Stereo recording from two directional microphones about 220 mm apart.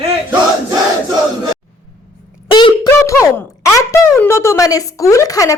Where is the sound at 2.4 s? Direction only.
20° left (ahead or behind).